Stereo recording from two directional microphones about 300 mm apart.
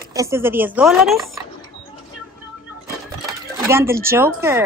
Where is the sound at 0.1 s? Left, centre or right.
Centre.